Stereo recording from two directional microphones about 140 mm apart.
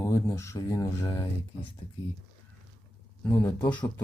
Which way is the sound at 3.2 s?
15° left (ahead or behind).